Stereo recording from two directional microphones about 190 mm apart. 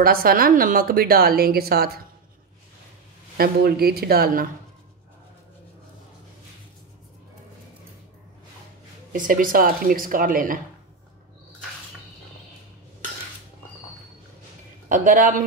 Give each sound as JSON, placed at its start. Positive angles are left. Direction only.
{"t": 0.0, "sound": "a woman's voice", "side_deg": -50}
{"t": 3.3, "sound": "speech", "side_deg": -55}
{"t": 9.1, "sound": "a woman's voice", "side_deg": -45}
{"t": 14.9, "sound": "a woman's voice", "side_deg": -45}